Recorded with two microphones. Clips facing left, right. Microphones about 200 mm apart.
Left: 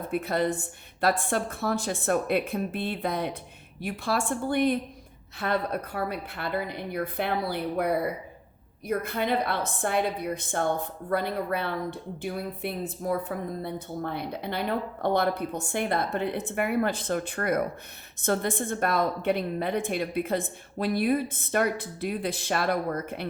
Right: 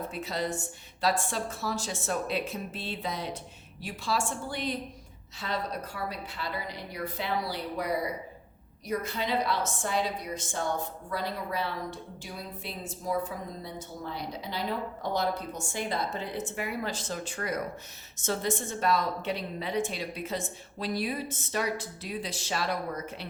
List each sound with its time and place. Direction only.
0.1 s a woman's voice: 55° left (ahead or behind)